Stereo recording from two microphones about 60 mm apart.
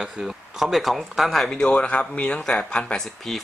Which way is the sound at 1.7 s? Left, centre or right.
Left.